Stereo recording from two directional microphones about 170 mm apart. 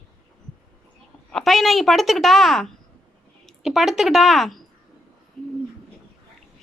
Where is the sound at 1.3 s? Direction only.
Centre (ahead or behind).